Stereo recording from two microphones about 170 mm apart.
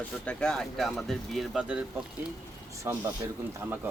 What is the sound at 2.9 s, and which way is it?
Speech, 15° right (ahead or behind).